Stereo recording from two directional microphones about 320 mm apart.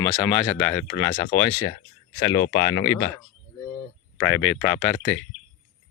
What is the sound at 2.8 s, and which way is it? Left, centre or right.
Speech, centre.